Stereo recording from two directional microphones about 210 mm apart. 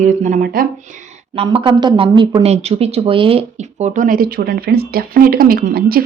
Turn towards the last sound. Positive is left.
turn(degrees=-45)  # may be behind; listen again after turning